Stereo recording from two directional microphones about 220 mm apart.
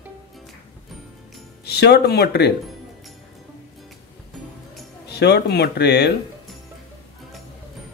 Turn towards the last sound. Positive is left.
turn(degrees=50)  # may be behind; listen again after turning